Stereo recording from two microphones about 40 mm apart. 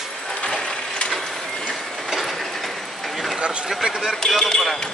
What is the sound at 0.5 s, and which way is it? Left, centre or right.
Ratchet, left.